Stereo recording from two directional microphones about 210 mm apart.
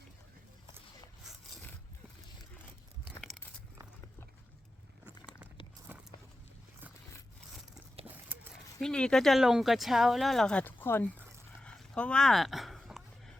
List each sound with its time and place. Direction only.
5.9 s walk: 10° right (ahead or behind)
8.0 s horse: 10° right (ahead or behind)
8.8 s speech: 5° left (ahead or behind)
11.6 s a sound: 5° left (ahead or behind)